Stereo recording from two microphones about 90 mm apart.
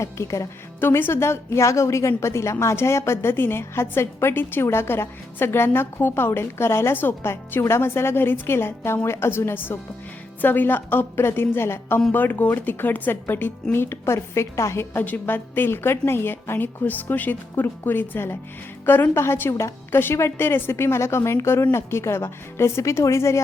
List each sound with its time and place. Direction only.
0.0 s a woman's voice: 35° left (ahead or behind)